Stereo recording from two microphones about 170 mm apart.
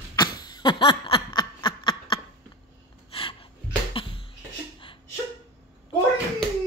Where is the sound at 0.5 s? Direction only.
25° left (ahead or behind).